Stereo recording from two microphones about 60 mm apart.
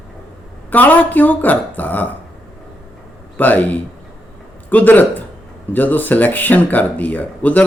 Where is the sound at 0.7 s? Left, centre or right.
Left.